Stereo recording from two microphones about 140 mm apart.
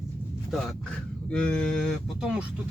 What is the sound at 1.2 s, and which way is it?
Speech, 10° left (ahead or behind).